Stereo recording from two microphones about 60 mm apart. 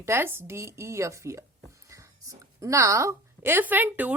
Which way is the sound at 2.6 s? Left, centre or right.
Right.